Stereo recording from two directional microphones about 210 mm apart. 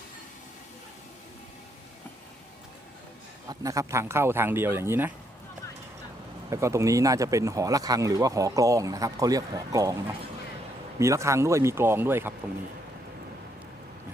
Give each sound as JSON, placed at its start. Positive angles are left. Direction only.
{"t": 3.5, "sound": "speech", "side_deg": -15}
{"t": 6.5, "sound": "speech", "side_deg": -15}
{"t": 11.0, "sound": "speech", "side_deg": -15}